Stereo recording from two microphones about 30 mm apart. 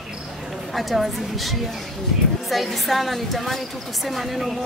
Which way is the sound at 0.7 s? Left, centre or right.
Centre.